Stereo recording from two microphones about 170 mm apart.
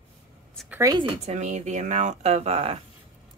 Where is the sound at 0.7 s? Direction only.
20° right (ahead or behind); by 2.8 s 35° right (ahead or behind).